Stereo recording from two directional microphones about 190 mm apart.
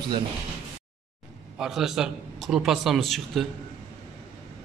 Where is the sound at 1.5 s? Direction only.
5° right (ahead or behind).